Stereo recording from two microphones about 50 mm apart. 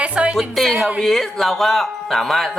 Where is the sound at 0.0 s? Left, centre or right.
Right.